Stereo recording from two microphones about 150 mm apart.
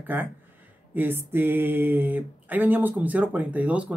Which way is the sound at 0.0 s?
10° right (ahead or behind).